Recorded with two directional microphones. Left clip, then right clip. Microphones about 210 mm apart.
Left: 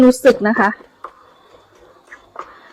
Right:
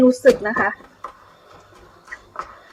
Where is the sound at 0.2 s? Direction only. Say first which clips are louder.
Left 3 dB; 50° left (ahead or behind).